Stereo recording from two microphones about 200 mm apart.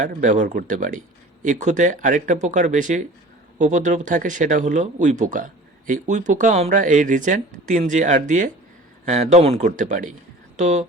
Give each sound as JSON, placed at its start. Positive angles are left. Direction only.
{"t": 0.0, "sound": "speech", "side_deg": -40}